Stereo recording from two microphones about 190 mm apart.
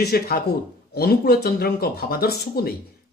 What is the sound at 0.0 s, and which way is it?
Speech, 55° left (ahead or behind).